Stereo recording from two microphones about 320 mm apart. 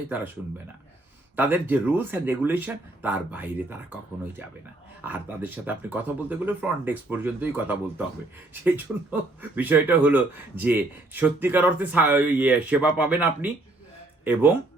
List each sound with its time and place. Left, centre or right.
1.4 s speech: centre